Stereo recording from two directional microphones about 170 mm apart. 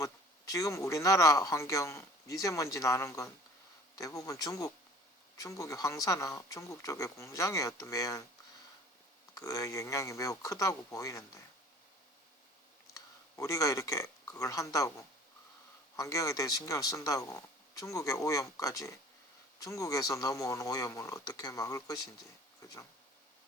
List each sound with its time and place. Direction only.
0.0 s speech: 20° left (ahead or behind)
9.3 s speech: 20° left (ahead or behind)
12.9 s speech: 20° left (ahead or behind)